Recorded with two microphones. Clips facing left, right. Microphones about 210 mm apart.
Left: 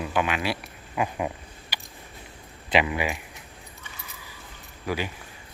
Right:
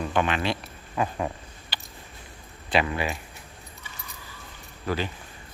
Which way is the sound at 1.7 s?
10° left (ahead or behind).